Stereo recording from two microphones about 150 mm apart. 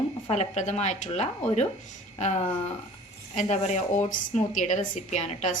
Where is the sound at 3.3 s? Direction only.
50° left (ahead or behind).